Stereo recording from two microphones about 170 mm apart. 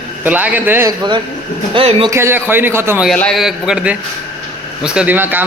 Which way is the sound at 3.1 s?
5° left (ahead or behind).